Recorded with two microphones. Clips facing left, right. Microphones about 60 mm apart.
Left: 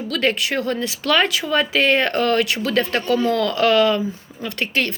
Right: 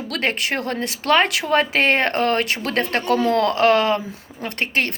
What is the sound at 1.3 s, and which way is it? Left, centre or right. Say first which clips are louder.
Speech: right 1 dB; right.